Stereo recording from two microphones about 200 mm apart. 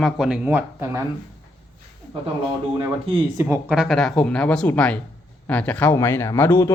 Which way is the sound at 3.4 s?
5° right (ahead or behind).